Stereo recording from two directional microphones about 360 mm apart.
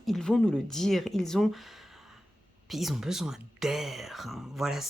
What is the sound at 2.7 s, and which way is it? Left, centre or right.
A woman's voice, centre.